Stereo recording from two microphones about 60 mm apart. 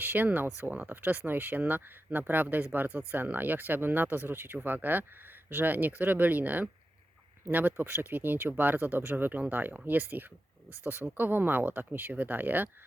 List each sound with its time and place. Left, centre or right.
0.0 s speech: right